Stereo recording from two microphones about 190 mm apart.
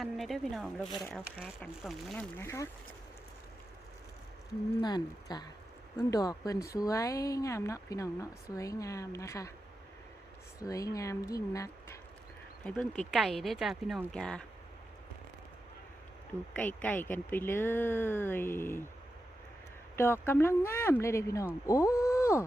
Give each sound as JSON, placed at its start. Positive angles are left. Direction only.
{"t": 0.0, "sound": "speech", "side_deg": 0}
{"t": 2.4, "sound": "speech", "side_deg": 15}
{"t": 4.8, "sound": "speech", "side_deg": 20}
{"t": 10.6, "sound": "speech", "side_deg": 15}
{"t": 12.6, "sound": "speech", "side_deg": 5}
{"t": 16.6, "sound": "speech", "side_deg": 10}
{"t": 20.0, "sound": "speech", "side_deg": 10}